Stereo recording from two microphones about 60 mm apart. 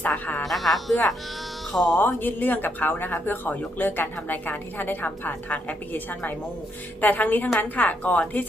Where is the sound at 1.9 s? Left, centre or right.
Left.